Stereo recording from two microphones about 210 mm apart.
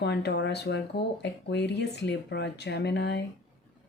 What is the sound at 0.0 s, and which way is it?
Speech, 55° left (ahead or behind).